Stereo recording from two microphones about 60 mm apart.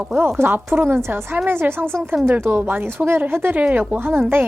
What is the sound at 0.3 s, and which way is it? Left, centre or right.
Speech, right.